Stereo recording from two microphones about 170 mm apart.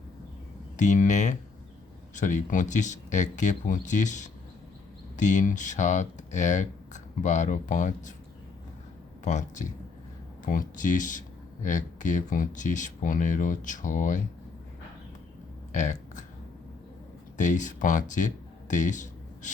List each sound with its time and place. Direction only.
0.8 s speech: 45° left (ahead or behind)
9.2 s speech: 45° left (ahead or behind)
15.7 s speech: 45° left (ahead or behind)
17.3 s speech: 45° left (ahead or behind)
18.7 s a sound: 45° left (ahead or behind)